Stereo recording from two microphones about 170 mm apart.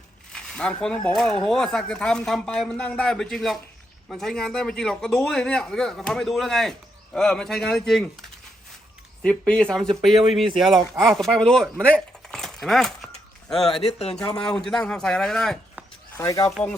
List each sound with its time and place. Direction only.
0.3 s a man's voice: 5° left (ahead or behind)
9.2 s a man's voice: 5° left (ahead or behind)
16.1 s speech: 20° left (ahead or behind)
16.5 s a man's voice: centre (ahead or behind)